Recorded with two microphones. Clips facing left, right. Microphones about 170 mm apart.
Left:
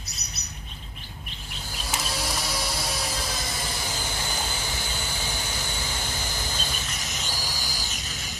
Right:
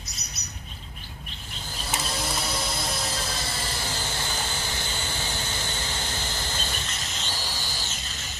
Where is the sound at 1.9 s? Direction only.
5° left (ahead or behind).